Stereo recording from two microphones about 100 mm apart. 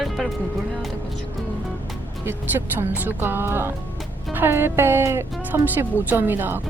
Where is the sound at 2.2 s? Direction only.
20° right (ahead or behind).